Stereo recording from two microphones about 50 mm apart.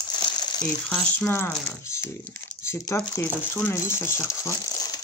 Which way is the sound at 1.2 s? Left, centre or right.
Left.